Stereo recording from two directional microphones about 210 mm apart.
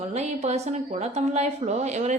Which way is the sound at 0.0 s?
30° right (ahead or behind).